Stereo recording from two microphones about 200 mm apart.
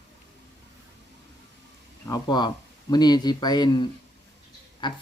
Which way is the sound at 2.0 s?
20° left (ahead or behind).